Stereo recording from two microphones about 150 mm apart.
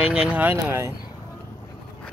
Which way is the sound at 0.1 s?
5° right (ahead or behind).